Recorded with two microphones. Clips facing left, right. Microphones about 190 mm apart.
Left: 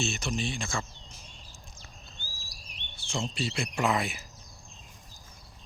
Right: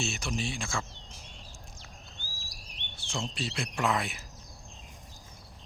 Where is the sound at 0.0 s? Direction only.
5° right (ahead or behind).